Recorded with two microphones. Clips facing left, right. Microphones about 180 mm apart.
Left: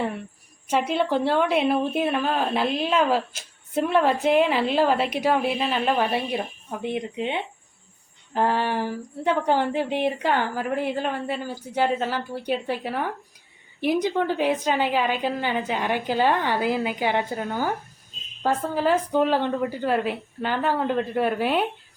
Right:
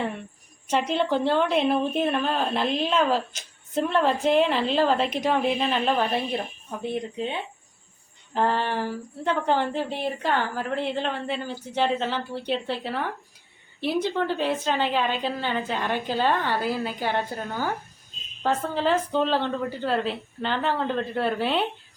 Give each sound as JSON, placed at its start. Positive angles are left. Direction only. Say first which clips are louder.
{"t": 0.7, "sound": "a woman's voice", "louder": "left 1 dB", "side_deg": 5}